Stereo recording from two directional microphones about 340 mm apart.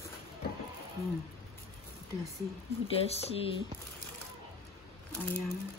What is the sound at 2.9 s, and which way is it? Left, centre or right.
Speech, centre.